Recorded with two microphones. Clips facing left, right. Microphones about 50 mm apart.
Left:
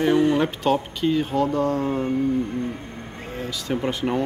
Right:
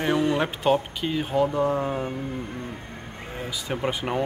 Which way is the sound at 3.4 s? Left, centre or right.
Centre.